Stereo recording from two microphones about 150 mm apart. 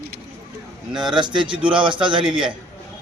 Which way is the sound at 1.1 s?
30° right (ahead or behind).